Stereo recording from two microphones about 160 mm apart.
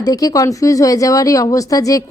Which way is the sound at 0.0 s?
25° left (ahead or behind).